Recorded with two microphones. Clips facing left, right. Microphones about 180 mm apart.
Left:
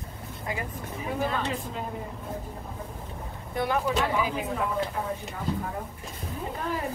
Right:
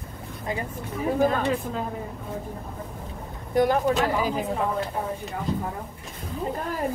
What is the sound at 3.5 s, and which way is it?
Speech, 40° right (ahead or behind).